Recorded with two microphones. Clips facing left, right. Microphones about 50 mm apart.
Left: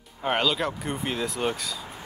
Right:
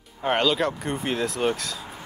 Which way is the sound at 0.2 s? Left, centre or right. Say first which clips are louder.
Right 3 dB; centre.